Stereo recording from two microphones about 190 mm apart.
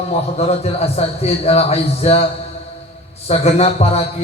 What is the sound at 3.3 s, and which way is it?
Speech, 35° left (ahead or behind).